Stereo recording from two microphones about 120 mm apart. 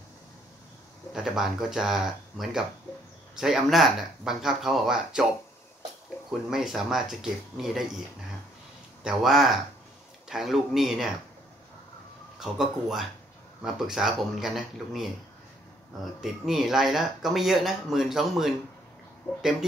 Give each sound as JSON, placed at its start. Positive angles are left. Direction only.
{"t": 1.1, "sound": "speech", "side_deg": -5}
{"t": 6.5, "sound": "speech", "side_deg": -5}
{"t": 9.0, "sound": "speech", "side_deg": 0}
{"t": 12.4, "sound": "speech", "side_deg": -5}
{"t": 16.2, "sound": "speech", "side_deg": 0}
{"t": 19.2, "sound": "speech", "side_deg": 15}